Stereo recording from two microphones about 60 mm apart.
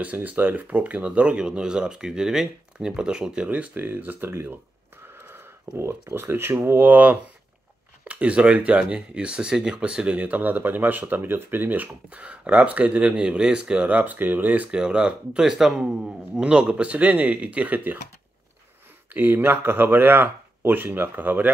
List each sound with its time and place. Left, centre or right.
0.0 s speech: right
5.0 s a sound: right
5.8 s speech: right
19.1 s speech: right